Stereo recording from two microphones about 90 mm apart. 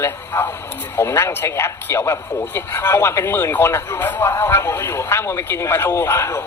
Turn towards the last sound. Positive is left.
turn(degrees=30)  # may be behind; listen again after turning